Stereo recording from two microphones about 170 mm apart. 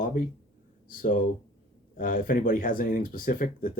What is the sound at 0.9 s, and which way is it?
Speech, 50° left (ahead or behind).